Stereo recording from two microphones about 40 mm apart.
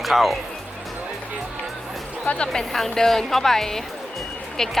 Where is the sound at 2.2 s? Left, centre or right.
Left.